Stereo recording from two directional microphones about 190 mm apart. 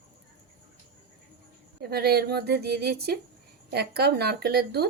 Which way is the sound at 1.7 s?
55° right (ahead or behind).